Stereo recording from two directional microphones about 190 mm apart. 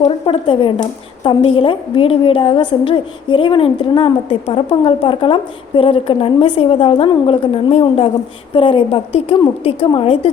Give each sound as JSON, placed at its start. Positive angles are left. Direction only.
{"t": 0.0, "sound": "a woman's voice", "side_deg": 30}